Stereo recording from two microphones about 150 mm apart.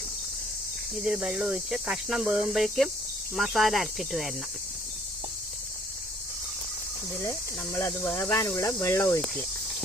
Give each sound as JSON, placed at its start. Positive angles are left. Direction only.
{"t": 0.9, "sound": "speech", "side_deg": -5}
{"t": 7.3, "sound": "speech", "side_deg": 15}